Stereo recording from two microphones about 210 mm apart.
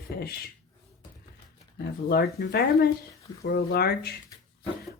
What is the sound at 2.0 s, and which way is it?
Speech, 50° left (ahead or behind).